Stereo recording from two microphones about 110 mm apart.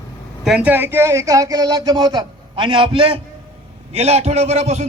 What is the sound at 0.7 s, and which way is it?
A man's voice, 20° right (ahead or behind).